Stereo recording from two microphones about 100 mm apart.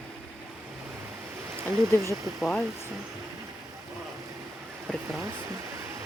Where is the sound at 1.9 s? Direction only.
30° right (ahead or behind).